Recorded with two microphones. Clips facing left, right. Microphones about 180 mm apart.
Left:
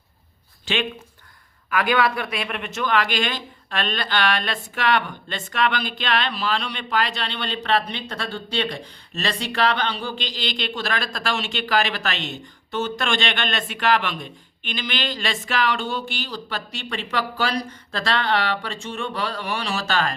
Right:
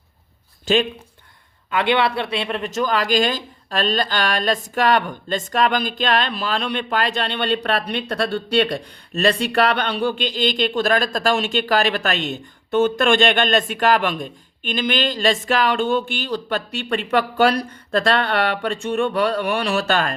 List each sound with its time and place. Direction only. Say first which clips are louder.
0.6 s speech: right 7 dB; 40° right (ahead or behind)
1.7 s speech: right 2 dB; 25° right (ahead or behind); by 20.1 s 55° right (ahead or behind)